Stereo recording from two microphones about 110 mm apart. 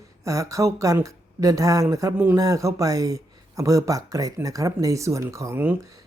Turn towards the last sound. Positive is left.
turn(degrees=-20)  # may be behind; listen again after turning